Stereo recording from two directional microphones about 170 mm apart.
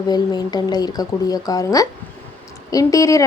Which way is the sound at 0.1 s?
25° left (ahead or behind).